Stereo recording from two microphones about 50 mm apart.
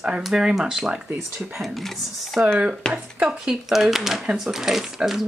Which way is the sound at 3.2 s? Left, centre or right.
Centre.